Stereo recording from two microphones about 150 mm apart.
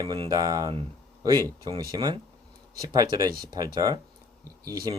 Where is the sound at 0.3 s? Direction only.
25° right (ahead or behind).